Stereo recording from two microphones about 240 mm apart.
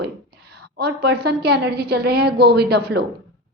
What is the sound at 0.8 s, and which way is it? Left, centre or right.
A woman's voice, right.